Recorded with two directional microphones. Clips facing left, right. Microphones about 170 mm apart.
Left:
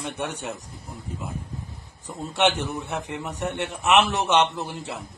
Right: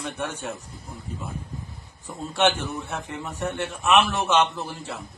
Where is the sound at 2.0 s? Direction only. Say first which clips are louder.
Even; 20° left (ahead or behind).